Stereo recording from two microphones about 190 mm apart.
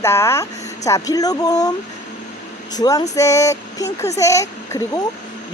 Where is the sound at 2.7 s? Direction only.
20° left (ahead or behind).